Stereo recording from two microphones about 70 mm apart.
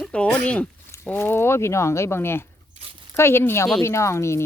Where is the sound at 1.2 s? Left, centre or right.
Left.